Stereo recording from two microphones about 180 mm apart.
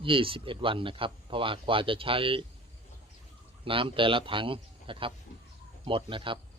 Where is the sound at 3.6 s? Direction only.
30° right (ahead or behind).